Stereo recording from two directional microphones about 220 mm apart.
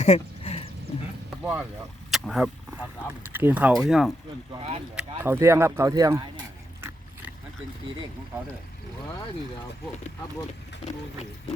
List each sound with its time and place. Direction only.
0.0 s a sound: 30° left (ahead or behind)
2.0 s vehicle: centre (ahead or behind)
3.3 s speech: 10° right (ahead or behind)
4.5 s speech: 25° right (ahead or behind)
4.9 s speech: 10° right (ahead or behind)